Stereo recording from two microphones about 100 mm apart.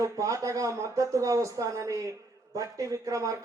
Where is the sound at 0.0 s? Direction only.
35° right (ahead or behind).